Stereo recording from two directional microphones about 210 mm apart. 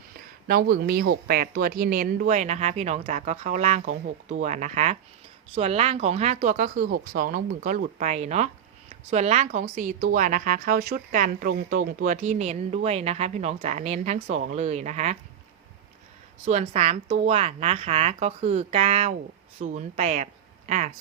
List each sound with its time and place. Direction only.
0.4 s speech: 45° right (ahead or behind)
16.5 s speech: 30° right (ahead or behind)